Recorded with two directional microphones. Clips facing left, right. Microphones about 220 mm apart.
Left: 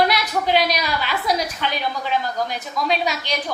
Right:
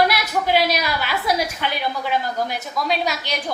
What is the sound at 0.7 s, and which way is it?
A woman's voice, 10° right (ahead or behind).